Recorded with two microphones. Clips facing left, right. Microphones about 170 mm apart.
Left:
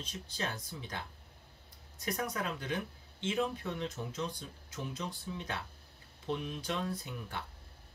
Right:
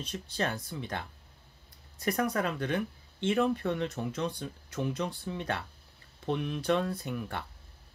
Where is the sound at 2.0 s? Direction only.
60° right (ahead or behind).